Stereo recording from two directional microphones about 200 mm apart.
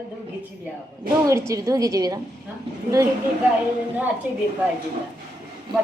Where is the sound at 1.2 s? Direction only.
15° right (ahead or behind).